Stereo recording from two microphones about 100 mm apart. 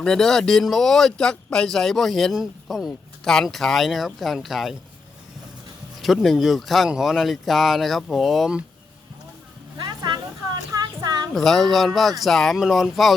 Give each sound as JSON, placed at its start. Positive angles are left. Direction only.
{"t": 0.0, "sound": "speech", "side_deg": 5}
{"t": 6.0, "sound": "speech", "side_deg": 0}
{"t": 9.7, "sound": "a sound", "side_deg": -45}
{"t": 11.3, "sound": "speech", "side_deg": 0}